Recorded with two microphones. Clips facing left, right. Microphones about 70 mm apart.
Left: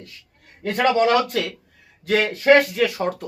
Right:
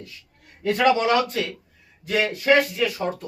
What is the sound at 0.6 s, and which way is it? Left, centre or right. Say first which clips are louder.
Speech: even; left.